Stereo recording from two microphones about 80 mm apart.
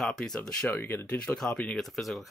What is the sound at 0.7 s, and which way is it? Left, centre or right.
Speech, left.